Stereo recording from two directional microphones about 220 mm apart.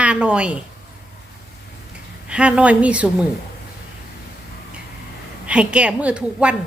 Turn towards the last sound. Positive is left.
turn(degrees=-5)  # may be behind; listen again after turning